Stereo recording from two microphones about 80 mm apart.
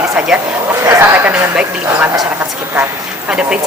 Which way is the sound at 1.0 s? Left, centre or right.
Right.